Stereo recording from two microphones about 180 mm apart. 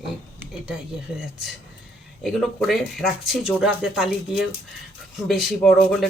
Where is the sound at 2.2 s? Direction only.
Centre (ahead or behind).